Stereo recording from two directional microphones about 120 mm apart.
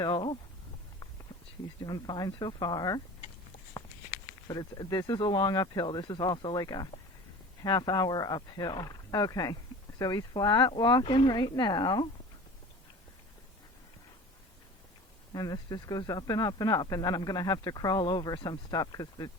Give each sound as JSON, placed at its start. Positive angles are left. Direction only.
{"t": 0.0, "sound": "speech", "side_deg": 40}
{"t": 1.8, "sound": "speech", "side_deg": 35}
{"t": 4.4, "sound": "speech", "side_deg": 35}
{"t": 15.3, "sound": "speech", "side_deg": 35}